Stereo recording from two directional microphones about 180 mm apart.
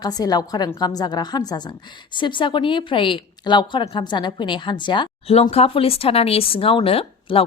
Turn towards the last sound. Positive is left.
turn(degrees=30)  # may be behind; listen again after turning